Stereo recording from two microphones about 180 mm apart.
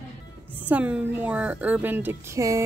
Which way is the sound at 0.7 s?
10° right (ahead or behind).